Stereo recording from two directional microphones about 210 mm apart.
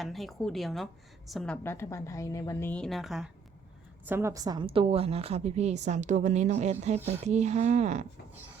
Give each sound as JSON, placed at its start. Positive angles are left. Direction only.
{"t": 0.0, "sound": "a woman's voice", "side_deg": 0}
{"t": 4.0, "sound": "a woman's voice", "side_deg": -10}